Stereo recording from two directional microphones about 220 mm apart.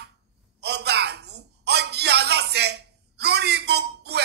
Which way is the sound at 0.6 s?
50° right (ahead or behind).